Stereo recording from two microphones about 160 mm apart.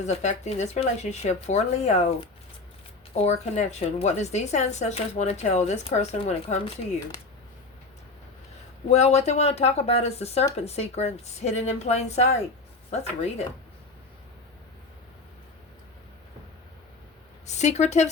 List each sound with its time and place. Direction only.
0.0 s speech: 45° left (ahead or behind)
3.2 s speech: 45° left (ahead or behind)
8.9 s speech: 45° left (ahead or behind)
17.4 s speech: 45° left (ahead or behind)